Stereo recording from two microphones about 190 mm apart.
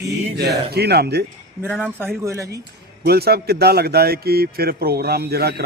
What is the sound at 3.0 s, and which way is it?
A man's voice, 55° right (ahead or behind).